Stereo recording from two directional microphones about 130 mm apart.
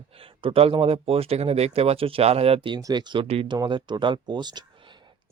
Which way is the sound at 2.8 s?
35° right (ahead or behind).